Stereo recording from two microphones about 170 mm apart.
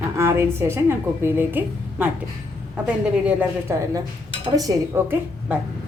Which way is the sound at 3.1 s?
10° right (ahead or behind).